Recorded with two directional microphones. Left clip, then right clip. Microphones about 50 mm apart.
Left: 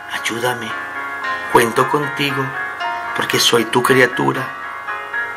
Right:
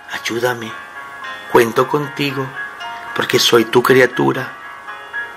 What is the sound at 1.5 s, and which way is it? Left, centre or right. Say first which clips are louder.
Speech: right 1 dB; right.